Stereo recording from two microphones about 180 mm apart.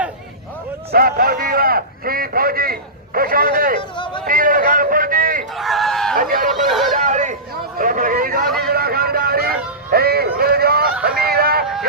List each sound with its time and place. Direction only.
0.9 s a man's voice: 55° right (ahead or behind)
3.9 s speech: 25° left (ahead or behind)
4.3 s a man's voice: 50° right (ahead or behind)
5.5 s a sound: centre (ahead or behind)
6.1 s speech: 50° right (ahead or behind)
6.7 s chatter: centre (ahead or behind)
6.9 s chatter: 45° right (ahead or behind)
7.8 s hubbub: 50° right (ahead or behind)
8.4 s vehicle: centre (ahead or behind)
8.7 s vehicle: 55° right (ahead or behind)
9.9 s a sound: 60° right (ahead or behind)